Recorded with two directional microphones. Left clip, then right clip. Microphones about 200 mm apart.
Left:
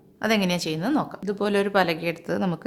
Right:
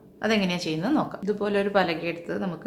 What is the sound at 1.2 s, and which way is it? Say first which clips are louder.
A woman's voice: left 1 dB; 50° left (ahead or behind).